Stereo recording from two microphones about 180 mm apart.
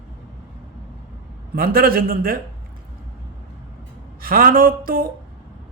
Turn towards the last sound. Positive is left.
turn(degrees=-55)  # may be behind; listen again after turning